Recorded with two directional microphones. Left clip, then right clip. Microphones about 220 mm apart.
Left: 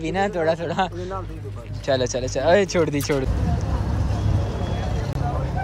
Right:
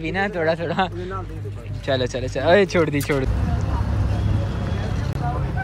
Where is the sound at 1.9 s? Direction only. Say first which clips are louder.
Left 1 dB; 15° left (ahead or behind).